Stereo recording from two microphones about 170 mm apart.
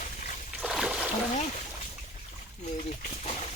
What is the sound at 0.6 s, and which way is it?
Splash, 5° right (ahead or behind).